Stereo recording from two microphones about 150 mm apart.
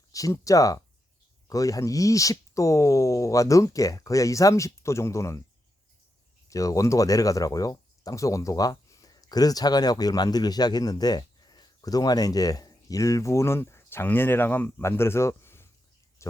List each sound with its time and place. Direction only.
0.1 s speech: 20° left (ahead or behind)
6.5 s speech: 20° left (ahead or behind)